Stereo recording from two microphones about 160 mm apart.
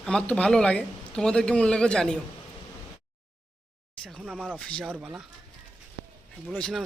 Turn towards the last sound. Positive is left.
turn(degrees=0)  # may be behind; listen again after turning